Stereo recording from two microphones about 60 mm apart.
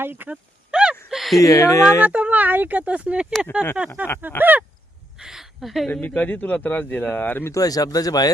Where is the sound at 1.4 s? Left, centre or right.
Left.